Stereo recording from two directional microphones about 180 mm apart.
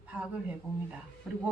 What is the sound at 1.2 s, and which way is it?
Speech, centre (ahead or behind).